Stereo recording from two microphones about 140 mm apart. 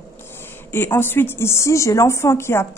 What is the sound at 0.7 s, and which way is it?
Speech, 15° left (ahead or behind).